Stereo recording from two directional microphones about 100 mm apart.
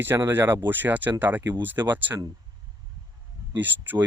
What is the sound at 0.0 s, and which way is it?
Speech, 20° right (ahead or behind).